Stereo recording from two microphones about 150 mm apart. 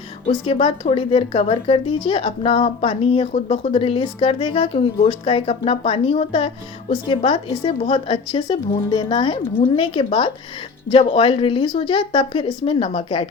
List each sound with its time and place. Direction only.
0.3 s a woman's voice: 35° left (ahead or behind)